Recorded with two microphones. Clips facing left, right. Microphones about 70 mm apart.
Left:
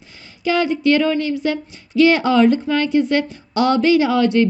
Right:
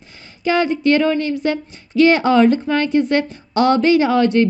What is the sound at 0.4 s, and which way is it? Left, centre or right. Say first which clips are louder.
A woman's voice: right 1 dB; right.